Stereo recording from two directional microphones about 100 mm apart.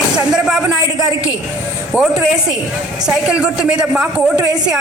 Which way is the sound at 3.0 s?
10° right (ahead or behind).